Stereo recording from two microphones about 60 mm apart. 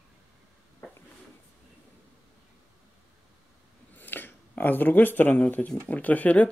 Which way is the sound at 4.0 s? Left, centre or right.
Left.